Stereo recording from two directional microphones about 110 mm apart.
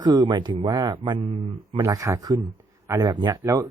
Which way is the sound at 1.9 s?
30° right (ahead or behind).